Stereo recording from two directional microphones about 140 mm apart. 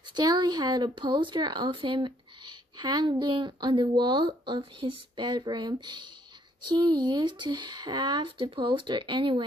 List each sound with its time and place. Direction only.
0.1 s speech: 30° right (ahead or behind)